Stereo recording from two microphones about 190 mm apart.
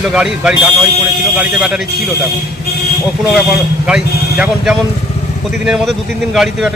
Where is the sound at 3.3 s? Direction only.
5° right (ahead or behind).